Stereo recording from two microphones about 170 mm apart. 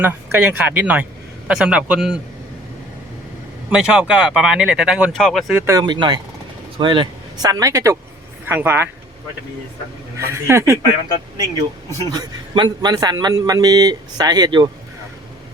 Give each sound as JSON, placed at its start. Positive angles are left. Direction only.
{"t": 0.0, "sound": "speech", "side_deg": -10}
{"t": 3.7, "sound": "speech", "side_deg": -5}
{"t": 5.5, "sound": "a man's voice", "side_deg": -20}
{"t": 10.2, "sound": "speech", "side_deg": -15}
{"t": 12.1, "sound": "a man's voice", "side_deg": -25}